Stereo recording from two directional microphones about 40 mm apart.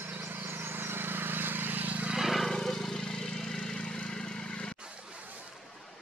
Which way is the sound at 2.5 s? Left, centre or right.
Centre.